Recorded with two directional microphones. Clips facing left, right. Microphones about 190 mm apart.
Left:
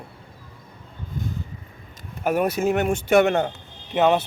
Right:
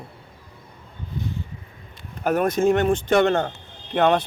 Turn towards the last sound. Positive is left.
turn(degrees=5)  # may be behind; listen again after turning